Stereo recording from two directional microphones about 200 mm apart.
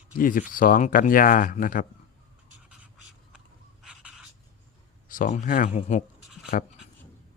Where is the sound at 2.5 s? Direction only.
5° right (ahead or behind).